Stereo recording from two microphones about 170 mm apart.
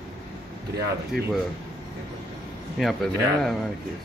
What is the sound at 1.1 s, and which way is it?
Speech, 65° right (ahead or behind).